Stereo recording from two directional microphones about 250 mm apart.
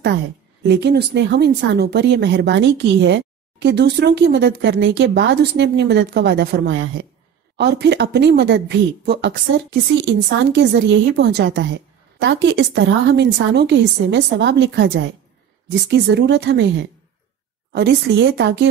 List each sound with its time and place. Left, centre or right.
0.7 s speech: right